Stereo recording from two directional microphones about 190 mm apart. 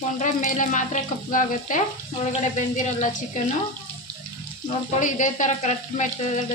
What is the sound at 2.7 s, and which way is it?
Frying, 40° left (ahead or behind).